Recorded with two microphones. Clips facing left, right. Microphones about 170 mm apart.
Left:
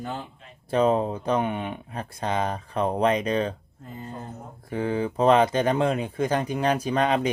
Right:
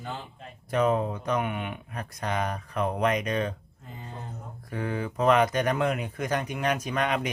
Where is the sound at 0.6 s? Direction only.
30° left (ahead or behind).